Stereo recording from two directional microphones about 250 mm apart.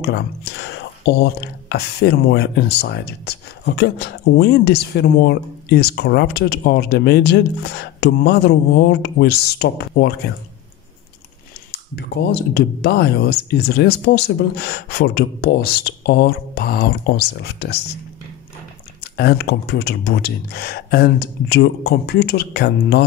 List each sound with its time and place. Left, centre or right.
0.0 s speech: left
11.7 s speech: left
19.1 s speech: left